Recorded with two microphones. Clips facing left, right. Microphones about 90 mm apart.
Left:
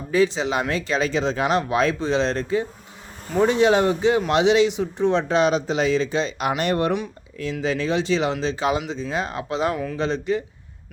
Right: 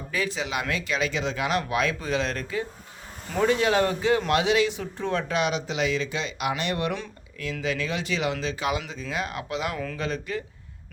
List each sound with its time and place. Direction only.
0.1 s speech: 30° left (ahead or behind)
5.3 s speech: 35° left (ahead or behind)
9.7 s speech: 15° left (ahead or behind)